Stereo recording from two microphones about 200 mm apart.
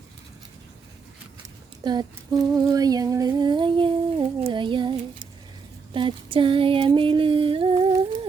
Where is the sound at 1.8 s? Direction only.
20° right (ahead or behind).